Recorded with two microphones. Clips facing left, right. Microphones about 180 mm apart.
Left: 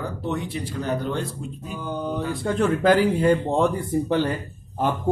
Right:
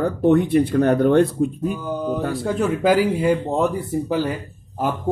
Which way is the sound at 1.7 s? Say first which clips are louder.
Right 4 dB; 5° right (ahead or behind).